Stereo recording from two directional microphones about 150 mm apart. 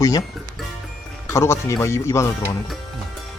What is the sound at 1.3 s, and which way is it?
Speech, 20° left (ahead or behind).